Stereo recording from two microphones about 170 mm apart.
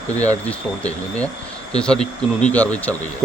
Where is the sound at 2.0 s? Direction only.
45° left (ahead or behind).